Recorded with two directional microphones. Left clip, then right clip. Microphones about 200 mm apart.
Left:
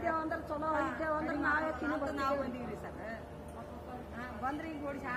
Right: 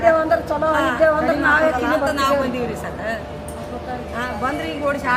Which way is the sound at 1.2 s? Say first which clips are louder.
Right 17 dB; centre (ahead or behind).